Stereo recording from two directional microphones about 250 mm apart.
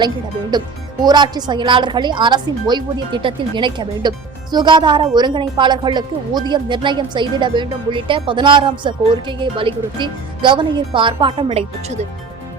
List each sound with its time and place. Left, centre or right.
1.0 s a woman's voice: centre